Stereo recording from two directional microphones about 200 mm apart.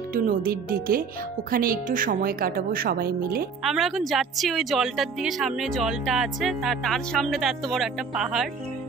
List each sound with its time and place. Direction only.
0.1 s a woman's voice: 45° right (ahead or behind)
3.6 s speech: centre (ahead or behind)